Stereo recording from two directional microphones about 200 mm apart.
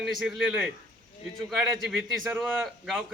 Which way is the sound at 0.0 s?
Centre (ahead or behind).